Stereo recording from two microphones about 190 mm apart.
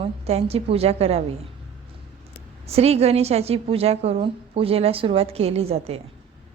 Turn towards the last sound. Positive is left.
turn(degrees=-30)  # may be behind; listen again after turning